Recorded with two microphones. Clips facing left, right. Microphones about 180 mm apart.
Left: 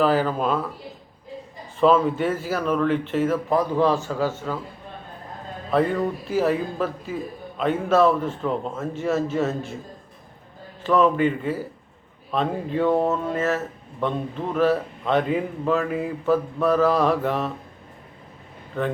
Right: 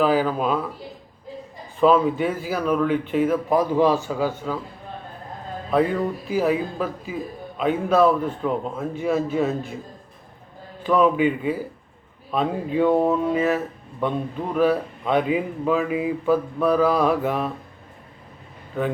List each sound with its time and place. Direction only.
0.0 s a man's voice: 5° right (ahead or behind)
1.8 s a man's voice: 5° right (ahead or behind)
5.7 s a man's voice: 5° right (ahead or behind)
11.0 s a man's voice: 10° right (ahead or behind)
18.8 s a man's voice: 5° right (ahead or behind)